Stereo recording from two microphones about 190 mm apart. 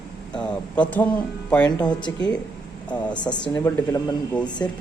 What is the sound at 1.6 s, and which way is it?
Speech, 20° left (ahead or behind).